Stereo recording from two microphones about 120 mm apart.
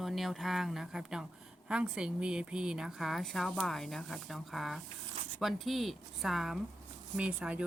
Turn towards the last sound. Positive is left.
turn(degrees=-10)  # may be behind; listen again after turning